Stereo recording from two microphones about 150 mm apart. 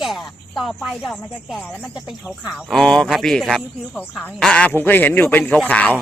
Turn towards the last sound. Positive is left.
turn(degrees=10)  # may be behind; listen again after turning